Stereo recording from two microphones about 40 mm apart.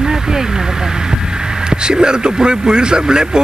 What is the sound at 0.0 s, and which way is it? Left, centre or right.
Vehicle, centre.